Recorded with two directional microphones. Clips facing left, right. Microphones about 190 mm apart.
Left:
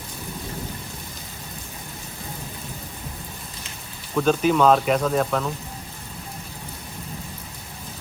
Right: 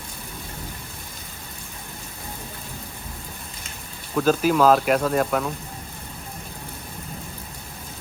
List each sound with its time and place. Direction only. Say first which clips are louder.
4.2 s speech: even; 5° right (ahead or behind)